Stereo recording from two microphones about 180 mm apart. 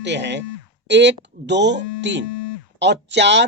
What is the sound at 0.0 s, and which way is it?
Speech, 75° right (ahead or behind).